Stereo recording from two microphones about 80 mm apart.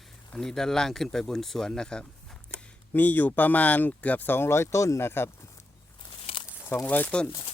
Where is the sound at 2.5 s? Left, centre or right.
Left.